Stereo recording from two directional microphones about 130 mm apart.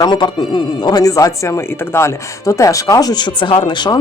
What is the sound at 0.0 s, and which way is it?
Speech, 35° left (ahead or behind).